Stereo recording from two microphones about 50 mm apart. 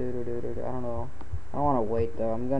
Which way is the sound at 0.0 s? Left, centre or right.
Centre.